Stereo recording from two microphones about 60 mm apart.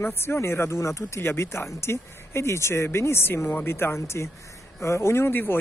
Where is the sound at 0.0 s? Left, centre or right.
Left.